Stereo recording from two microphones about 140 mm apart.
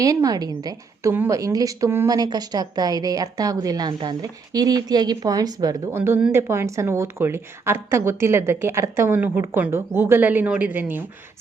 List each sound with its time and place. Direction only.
0.0 s a woman's voice: 25° right (ahead or behind)
1.1 s a woman's voice: 15° right (ahead or behind)
1.4 s a woman's voice: 25° right (ahead or behind)
6.0 s a woman's voice: 15° right (ahead or behind)